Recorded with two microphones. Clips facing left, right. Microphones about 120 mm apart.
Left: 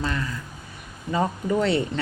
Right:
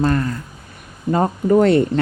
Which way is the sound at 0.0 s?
50° right (ahead or behind).